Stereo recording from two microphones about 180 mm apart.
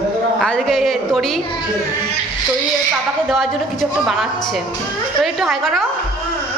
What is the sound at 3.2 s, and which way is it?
A woman's voice, centre (ahead or behind).